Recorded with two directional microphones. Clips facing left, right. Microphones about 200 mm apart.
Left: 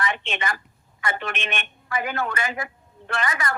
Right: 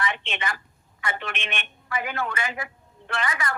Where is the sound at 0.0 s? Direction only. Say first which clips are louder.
Left 2 dB; 45° left (ahead or behind).